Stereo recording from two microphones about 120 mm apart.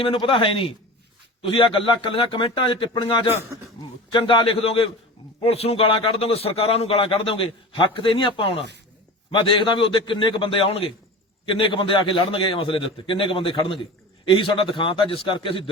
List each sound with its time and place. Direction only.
0.0 s a man's voice: 45° left (ahead or behind)